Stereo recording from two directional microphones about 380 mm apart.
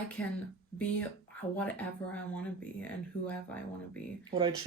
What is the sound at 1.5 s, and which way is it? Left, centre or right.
Speech, centre.